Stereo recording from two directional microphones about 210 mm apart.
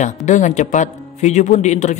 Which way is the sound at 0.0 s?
35° left (ahead or behind).